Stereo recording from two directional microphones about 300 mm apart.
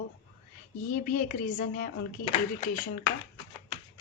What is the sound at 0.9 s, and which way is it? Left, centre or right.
A woman's voice, left.